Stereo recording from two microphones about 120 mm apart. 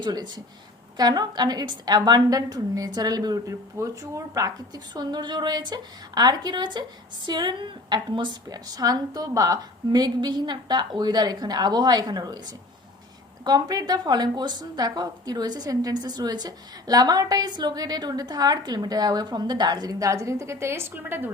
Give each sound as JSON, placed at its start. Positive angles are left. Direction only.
{"t": 0.0, "sound": "a woman's voice", "side_deg": -35}